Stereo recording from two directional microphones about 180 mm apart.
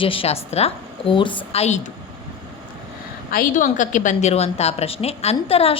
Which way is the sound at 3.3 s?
50° left (ahead or behind).